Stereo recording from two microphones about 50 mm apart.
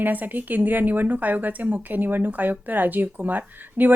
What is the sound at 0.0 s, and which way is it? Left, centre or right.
Speech, right.